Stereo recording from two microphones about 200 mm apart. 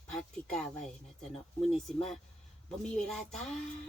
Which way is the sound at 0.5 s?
5° left (ahead or behind).